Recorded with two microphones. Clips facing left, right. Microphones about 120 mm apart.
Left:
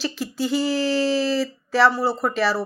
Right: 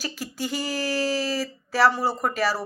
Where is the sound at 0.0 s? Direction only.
45° right (ahead or behind).